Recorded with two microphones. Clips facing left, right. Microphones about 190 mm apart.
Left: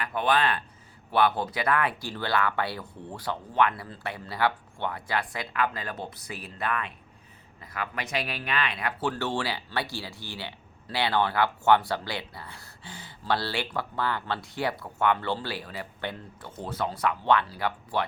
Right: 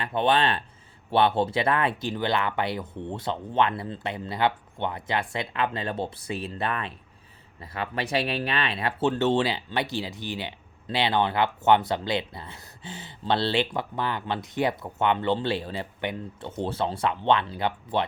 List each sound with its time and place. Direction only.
0.0 s speech: 25° right (ahead or behind)
16.6 s speech: 30° right (ahead or behind)